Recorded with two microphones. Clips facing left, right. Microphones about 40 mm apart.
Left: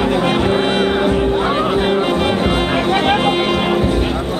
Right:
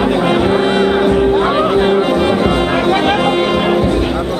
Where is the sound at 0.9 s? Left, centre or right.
Centre.